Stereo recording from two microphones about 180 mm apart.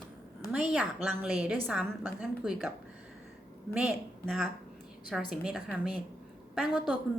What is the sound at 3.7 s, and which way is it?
Speech, centre (ahead or behind).